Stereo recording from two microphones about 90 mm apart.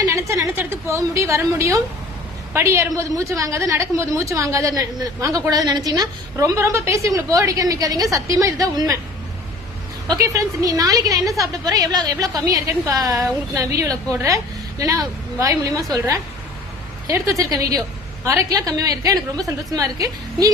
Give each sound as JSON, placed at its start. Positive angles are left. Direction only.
{"t": 0.0, "sound": "a woman's voice", "side_deg": -35}
{"t": 10.1, "sound": "a woman's voice", "side_deg": -40}
{"t": 17.1, "sound": "a woman's voice", "side_deg": -40}